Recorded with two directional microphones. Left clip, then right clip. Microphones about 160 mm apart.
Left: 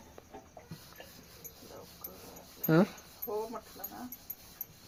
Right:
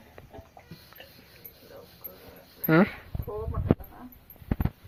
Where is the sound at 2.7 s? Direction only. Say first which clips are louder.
Right 5 dB; 15° right (ahead or behind).